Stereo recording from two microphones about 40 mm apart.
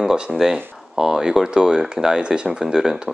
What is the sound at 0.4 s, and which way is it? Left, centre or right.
Speech, centre.